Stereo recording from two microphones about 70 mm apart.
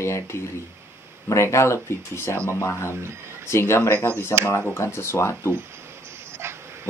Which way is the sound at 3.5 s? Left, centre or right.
Left.